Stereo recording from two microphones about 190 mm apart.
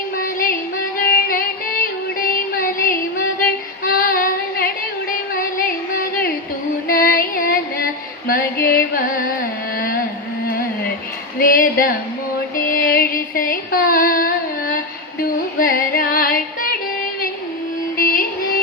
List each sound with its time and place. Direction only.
0.2 s music: 45° left (ahead or behind)
3.8 s child singing: 50° left (ahead or behind)
5.3 s music: 45° left (ahead or behind)
9.7 s a sound: 50° left (ahead or behind)
11.3 s a sound: 45° left (ahead or behind)
12.5 s music: 50° left (ahead or behind)
17.9 s music: 50° left (ahead or behind)